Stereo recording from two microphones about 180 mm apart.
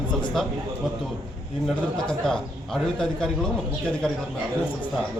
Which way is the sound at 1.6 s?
5° left (ahead or behind).